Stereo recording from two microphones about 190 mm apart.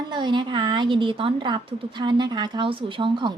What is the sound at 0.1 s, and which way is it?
Speech, 25° right (ahead or behind).